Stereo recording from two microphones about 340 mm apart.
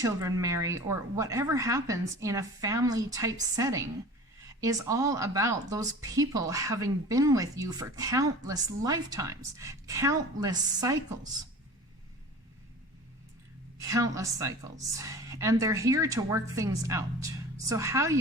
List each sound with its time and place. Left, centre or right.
0.0 s a woman's voice: centre
13.7 s a woman's voice: centre